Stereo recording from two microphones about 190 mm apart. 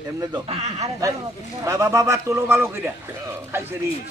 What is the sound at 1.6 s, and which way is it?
A man's voice, 15° right (ahead or behind).